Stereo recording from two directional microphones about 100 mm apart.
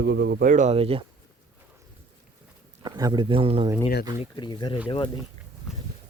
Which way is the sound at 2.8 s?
45° right (ahead or behind).